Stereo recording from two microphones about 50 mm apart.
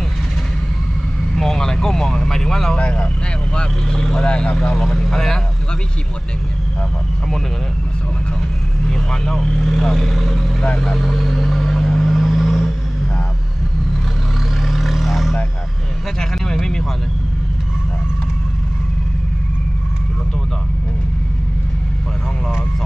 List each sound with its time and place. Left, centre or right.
1.3 s speech: centre
2.8 s speech: left
4.7 s speech: centre
8.8 s speech: centre
11.8 s vehicle: centre
14.6 s vehicle: centre
16.2 s a sound: centre